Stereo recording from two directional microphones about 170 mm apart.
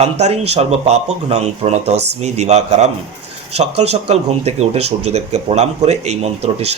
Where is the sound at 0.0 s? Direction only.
40° right (ahead or behind).